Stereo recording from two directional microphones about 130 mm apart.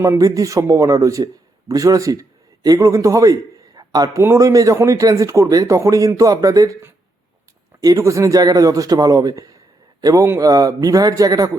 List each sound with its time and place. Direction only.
0.0 s speech: 25° right (ahead or behind)
3.8 s a sound: 30° right (ahead or behind)
4.2 s speech: 25° right (ahead or behind)